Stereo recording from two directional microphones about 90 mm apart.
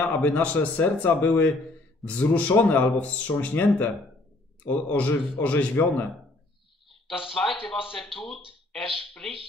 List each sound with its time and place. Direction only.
0.0 s a man's voice: 15° left (ahead or behind)
7.4 s a man's voice: 10° left (ahead or behind)